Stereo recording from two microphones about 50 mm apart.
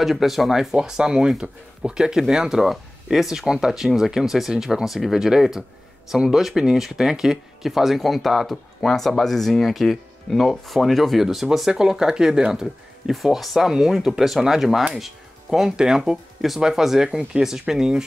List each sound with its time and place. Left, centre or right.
0.0 s speech: centre
13.1 s speech: centre